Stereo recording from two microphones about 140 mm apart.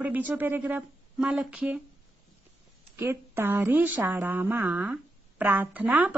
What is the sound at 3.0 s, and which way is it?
Speech, 15° right (ahead or behind).